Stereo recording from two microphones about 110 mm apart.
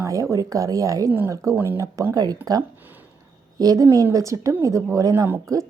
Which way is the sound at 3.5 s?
35° right (ahead or behind).